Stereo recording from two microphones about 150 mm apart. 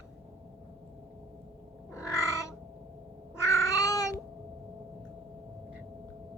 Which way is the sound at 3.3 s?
20° left (ahead or behind).